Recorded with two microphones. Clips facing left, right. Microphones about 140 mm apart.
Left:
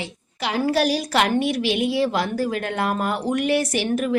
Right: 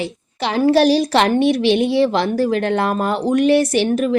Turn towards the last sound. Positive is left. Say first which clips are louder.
# right 5 dB
turn(degrees=-30)  # may be behind; listen again after turning